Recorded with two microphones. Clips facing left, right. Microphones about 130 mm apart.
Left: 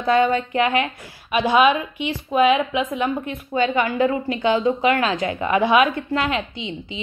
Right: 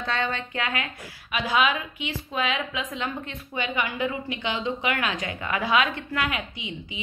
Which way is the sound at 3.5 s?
35° left (ahead or behind).